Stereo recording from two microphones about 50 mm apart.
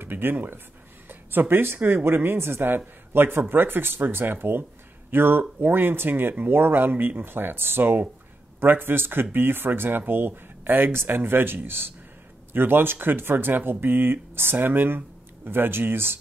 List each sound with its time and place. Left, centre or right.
0.0 s speech: right